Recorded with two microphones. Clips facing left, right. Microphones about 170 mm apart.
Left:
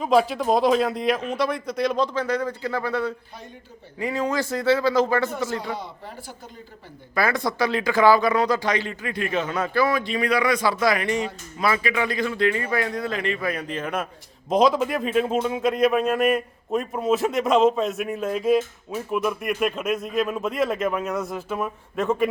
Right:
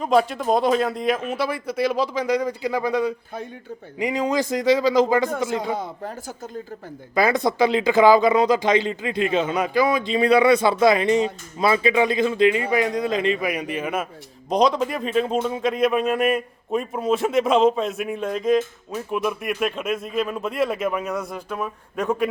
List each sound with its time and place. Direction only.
0.0 s a man's voice: centre (ahead or behind); by 5.7 s 20° right (ahead or behind)
5.7 s speech: 50° right (ahead or behind)
7.2 s speech: 20° right (ahead or behind)
14.5 s a man's voice: 5° left (ahead or behind)